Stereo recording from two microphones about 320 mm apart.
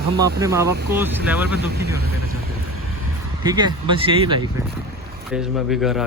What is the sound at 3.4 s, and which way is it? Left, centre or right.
Speech, centre.